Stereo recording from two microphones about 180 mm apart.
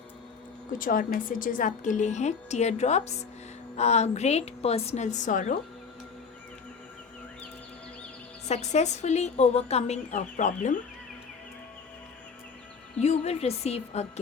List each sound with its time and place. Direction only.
0.8 s a woman's voice: 50° left (ahead or behind)
8.4 s a woman's voice: 40° left (ahead or behind)
13.0 s a woman's voice: 35° left (ahead or behind)